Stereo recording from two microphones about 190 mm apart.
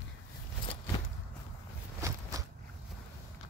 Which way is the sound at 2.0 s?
15° right (ahead or behind).